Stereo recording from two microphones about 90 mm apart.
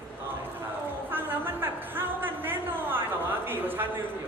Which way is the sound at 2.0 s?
25° right (ahead or behind).